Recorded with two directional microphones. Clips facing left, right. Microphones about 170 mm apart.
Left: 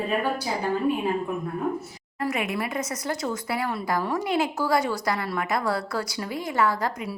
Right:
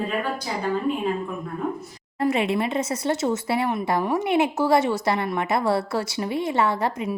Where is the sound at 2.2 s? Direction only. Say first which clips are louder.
Right 5 dB; 30° right (ahead or behind).